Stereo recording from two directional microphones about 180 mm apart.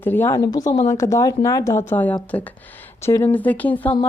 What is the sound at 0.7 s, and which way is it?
Speech, 35° left (ahead or behind).